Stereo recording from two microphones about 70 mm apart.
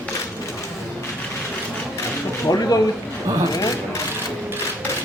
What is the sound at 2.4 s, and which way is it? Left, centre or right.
Speech, left.